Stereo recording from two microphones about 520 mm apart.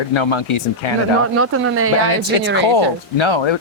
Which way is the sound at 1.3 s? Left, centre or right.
Right.